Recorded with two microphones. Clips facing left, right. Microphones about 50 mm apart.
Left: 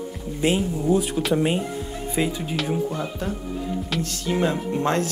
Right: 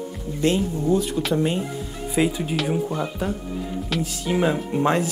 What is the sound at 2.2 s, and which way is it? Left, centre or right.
Speech, centre.